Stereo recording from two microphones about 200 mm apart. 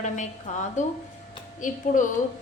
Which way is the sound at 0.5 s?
40° left (ahead or behind).